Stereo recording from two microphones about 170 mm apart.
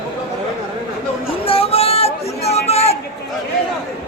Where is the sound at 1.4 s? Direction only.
35° left (ahead or behind).